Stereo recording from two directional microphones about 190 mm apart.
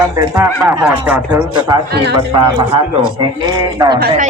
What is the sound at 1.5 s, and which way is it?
Speech, 25° right (ahead or behind).